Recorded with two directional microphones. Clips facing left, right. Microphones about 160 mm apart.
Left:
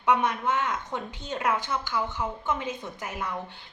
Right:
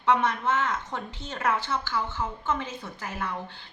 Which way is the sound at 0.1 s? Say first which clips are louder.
Even; 15° left (ahead or behind).